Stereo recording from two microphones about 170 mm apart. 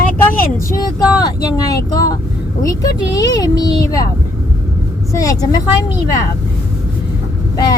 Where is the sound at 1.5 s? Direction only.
20° left (ahead or behind).